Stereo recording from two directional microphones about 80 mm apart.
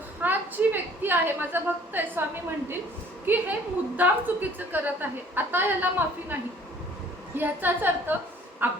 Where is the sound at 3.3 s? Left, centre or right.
Right.